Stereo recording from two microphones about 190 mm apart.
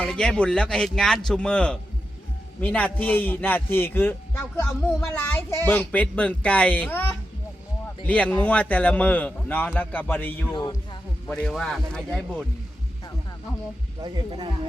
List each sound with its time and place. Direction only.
0.0 s a man's voice: 5° left (ahead or behind)
8.0 s a man's voice: 5° left (ahead or behind)
10.5 s speech: 20° left (ahead or behind)
11.3 s a man's voice: centre (ahead or behind)
14.0 s speech: 25° right (ahead or behind)